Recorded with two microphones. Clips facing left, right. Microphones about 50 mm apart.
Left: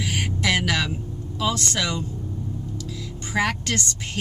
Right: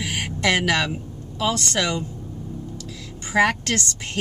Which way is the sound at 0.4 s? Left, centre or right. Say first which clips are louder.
Right 3 dB; centre.